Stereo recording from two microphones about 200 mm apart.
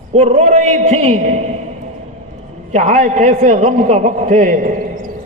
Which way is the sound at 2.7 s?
35° right (ahead or behind).